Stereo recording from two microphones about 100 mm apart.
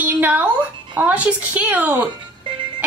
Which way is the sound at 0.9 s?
15° right (ahead or behind).